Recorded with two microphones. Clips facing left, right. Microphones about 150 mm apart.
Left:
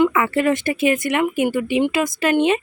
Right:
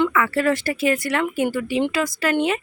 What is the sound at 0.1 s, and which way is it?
Speech, 20° left (ahead or behind).